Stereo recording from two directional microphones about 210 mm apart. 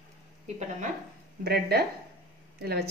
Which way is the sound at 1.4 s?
50° right (ahead or behind).